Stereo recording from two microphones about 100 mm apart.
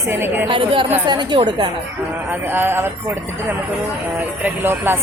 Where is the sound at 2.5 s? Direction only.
20° right (ahead or behind).